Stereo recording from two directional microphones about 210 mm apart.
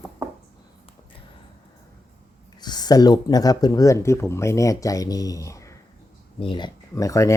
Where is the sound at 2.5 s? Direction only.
20° left (ahead or behind).